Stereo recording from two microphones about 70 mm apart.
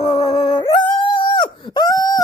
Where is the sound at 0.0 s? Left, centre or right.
Left.